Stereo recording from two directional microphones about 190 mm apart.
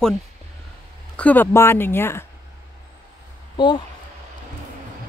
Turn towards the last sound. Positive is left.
turn(degrees=25)  # may be behind; listen again after turning